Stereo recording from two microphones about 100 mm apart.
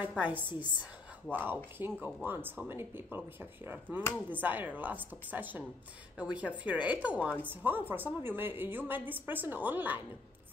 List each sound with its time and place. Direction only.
0.2 s a woman's voice: 15° right (ahead or behind)